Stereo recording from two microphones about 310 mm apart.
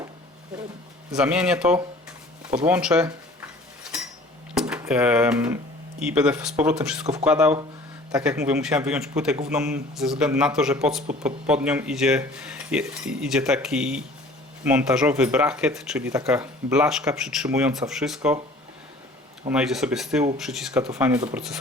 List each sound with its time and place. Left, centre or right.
1.1 s speech: centre
4.5 s speech: centre
19.5 s speech: centre